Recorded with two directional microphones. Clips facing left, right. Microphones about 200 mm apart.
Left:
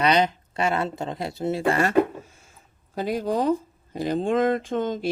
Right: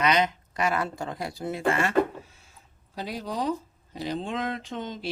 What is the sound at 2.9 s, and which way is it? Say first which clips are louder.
Speech: left 8 dB; 50° left (ahead or behind).